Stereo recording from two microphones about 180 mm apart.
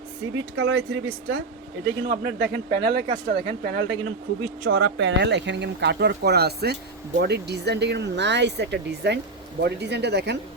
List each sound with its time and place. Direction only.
0.5 s speech: 90° right; by 3.0 s 70° right (ahead or behind)
3.1 s speech: 50° right (ahead or behind)
4.9 s speech: 85° right; by 10.3 s 65° right (ahead or behind)